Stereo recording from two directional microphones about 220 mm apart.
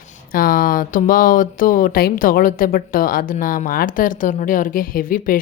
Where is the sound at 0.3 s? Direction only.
40° left (ahead or behind).